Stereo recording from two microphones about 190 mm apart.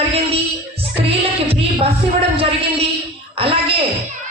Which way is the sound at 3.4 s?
30° right (ahead or behind).